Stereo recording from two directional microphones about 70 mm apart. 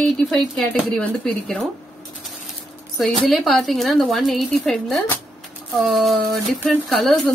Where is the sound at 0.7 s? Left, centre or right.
Centre.